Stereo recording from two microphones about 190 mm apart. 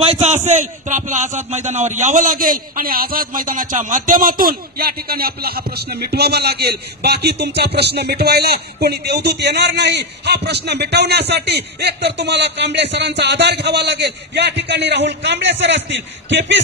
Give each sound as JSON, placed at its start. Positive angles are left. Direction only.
{"t": 0.1, "sound": "a man's voice", "side_deg": -35}